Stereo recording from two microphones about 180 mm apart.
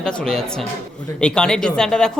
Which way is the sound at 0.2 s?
5° left (ahead or behind).